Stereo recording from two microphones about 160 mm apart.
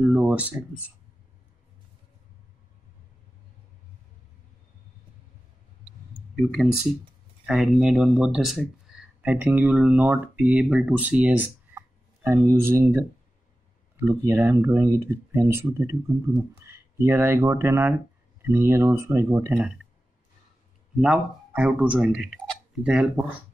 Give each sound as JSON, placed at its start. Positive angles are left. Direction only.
{"t": 0.0, "sound": "speech", "side_deg": -5}
{"t": 6.3, "sound": "speech", "side_deg": 0}
{"t": 11.7, "sound": "a sound", "side_deg": -10}
{"t": 12.4, "sound": "speech", "side_deg": -15}
{"t": 17.0, "sound": "speech", "side_deg": -15}
{"t": 21.0, "sound": "speech", "side_deg": -5}